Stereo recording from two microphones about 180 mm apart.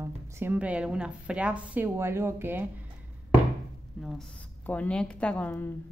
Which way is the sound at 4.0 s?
Centre (ahead or behind).